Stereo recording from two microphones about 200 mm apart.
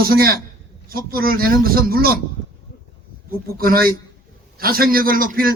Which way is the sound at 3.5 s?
45° right (ahead or behind).